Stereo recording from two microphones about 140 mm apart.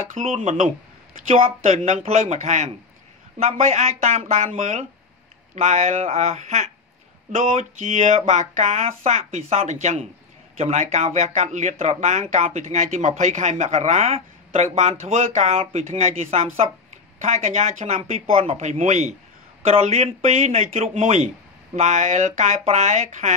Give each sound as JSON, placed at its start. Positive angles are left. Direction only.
{"t": 0.1, "sound": "speech", "side_deg": -55}